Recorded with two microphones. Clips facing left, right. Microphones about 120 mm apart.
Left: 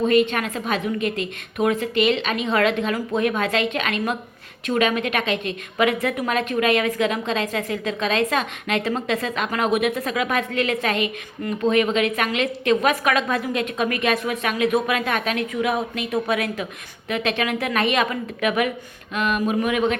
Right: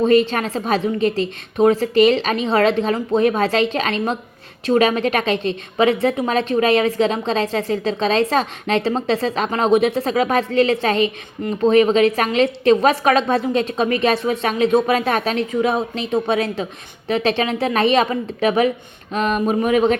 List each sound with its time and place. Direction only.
0.0 s a woman's voice: 35° right (ahead or behind)